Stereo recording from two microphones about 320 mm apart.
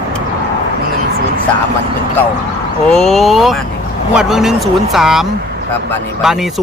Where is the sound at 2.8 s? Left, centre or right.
Centre.